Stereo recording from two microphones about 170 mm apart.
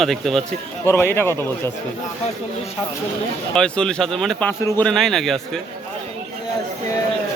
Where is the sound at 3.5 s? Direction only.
5° left (ahead or behind).